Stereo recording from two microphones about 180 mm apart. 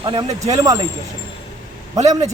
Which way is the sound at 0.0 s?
30° right (ahead or behind).